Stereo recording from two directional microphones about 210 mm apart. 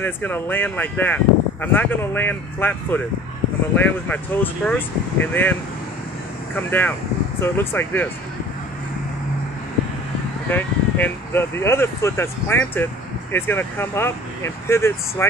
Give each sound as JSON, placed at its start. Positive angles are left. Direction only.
{"t": 0.0, "sound": "speech", "side_deg": 10}
{"t": 10.5, "sound": "speech", "side_deg": 10}